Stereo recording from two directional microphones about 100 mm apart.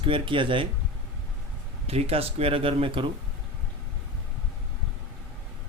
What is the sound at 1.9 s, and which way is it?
Speech, 85° right.